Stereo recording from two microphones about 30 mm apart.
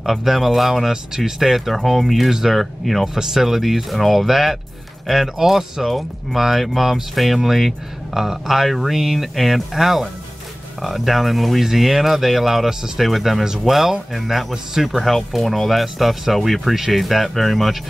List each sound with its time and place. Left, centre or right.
0.0 s speech: centre
1.1 s speech: centre
1.7 s speech: centre
3.2 s speech: centre
12.6 s speech: centre
13.0 s speech: centre